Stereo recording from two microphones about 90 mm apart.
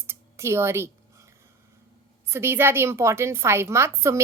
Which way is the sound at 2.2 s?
30° right (ahead or behind).